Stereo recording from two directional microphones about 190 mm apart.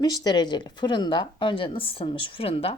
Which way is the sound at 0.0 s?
20° left (ahead or behind).